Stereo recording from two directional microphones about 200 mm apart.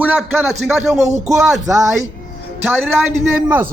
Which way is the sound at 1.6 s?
15° right (ahead or behind).